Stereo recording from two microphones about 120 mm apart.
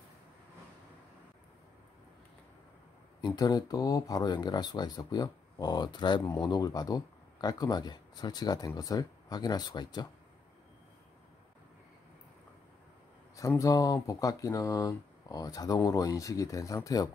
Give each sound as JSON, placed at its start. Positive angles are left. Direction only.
{"t": 3.2, "sound": "speech", "side_deg": 35}
{"t": 13.6, "sound": "speech", "side_deg": 30}